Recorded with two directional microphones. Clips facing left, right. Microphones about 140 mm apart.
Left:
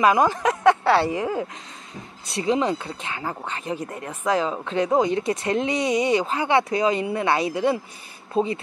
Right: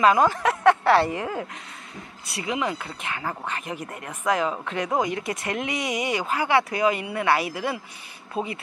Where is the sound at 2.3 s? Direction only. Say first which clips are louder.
Left 6 dB; 30° left (ahead or behind).